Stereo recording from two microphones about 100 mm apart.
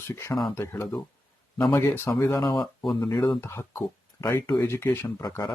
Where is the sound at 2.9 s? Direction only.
50° left (ahead or behind).